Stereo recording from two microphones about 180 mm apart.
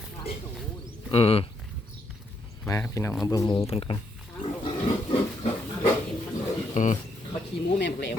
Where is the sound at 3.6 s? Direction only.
35° left (ahead or behind).